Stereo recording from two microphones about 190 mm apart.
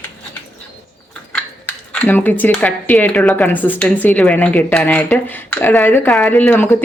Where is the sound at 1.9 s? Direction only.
5° left (ahead or behind).